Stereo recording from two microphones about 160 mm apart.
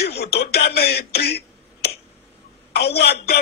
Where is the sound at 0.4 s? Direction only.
85° left.